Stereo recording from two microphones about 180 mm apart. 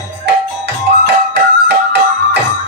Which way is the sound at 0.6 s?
65° right (ahead or behind).